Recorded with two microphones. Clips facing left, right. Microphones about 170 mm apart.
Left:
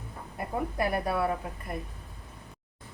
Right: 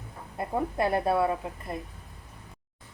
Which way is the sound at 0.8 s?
25° right (ahead or behind).